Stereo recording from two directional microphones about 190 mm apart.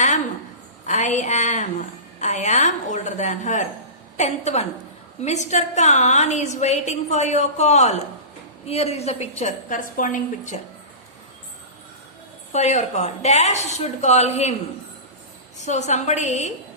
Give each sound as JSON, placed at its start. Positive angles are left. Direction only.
{"t": 0.9, "sound": "a woman's voice", "side_deg": 40}
{"t": 12.5, "sound": "a woman's voice", "side_deg": 35}
{"t": 15.6, "sound": "a woman's voice", "side_deg": 40}